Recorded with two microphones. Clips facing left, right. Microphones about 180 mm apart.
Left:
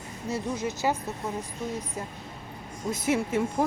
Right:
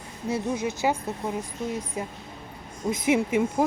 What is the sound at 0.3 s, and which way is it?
Speech, 15° right (ahead or behind).